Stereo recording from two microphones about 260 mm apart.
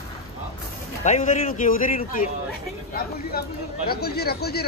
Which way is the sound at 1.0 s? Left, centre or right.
Left.